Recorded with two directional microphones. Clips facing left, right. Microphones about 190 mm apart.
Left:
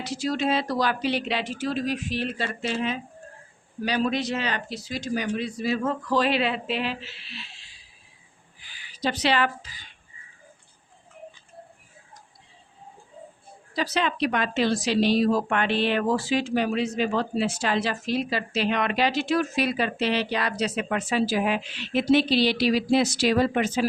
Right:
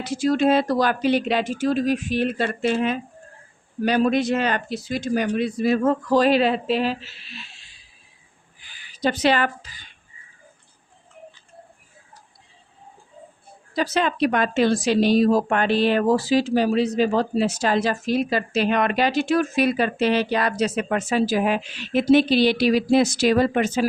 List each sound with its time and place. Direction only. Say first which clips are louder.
0.0 s speech: right 7 dB; 50° right (ahead or behind)
8.9 s speech: right 5 dB; 50° right (ahead or behind)
13.7 s speech: right 4 dB; 45° right (ahead or behind)